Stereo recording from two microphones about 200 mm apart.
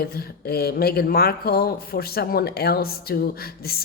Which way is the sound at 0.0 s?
50° left (ahead or behind).